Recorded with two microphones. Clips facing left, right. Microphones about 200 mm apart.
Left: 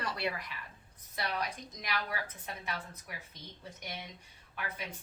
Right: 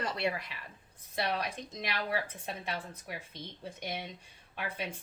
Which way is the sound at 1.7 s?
25° right (ahead or behind).